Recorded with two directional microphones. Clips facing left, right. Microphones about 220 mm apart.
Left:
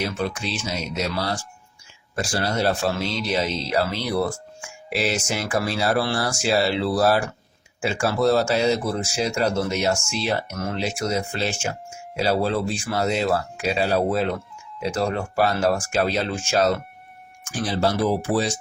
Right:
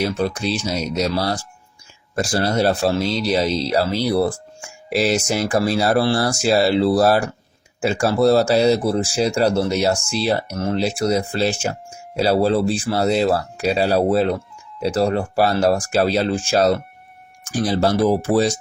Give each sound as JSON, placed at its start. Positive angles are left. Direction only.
{"t": 0.0, "sound": "speech", "side_deg": -35}